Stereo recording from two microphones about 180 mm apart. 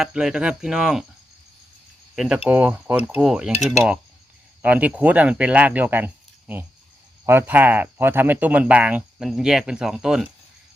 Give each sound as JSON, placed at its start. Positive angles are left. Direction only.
{"t": 0.0, "sound": "speech", "side_deg": -5}
{"t": 2.1, "sound": "speech", "side_deg": -5}
{"t": 7.3, "sound": "speech", "side_deg": -10}